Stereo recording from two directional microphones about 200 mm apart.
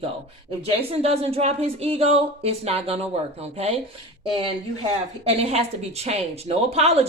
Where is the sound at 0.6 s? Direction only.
30° right (ahead or behind).